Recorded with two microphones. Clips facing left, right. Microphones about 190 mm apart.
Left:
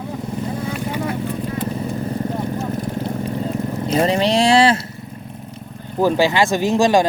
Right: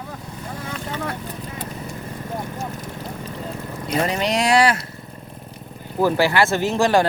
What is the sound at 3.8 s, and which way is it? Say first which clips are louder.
Speech: left 4 dB; 25° left (ahead or behind).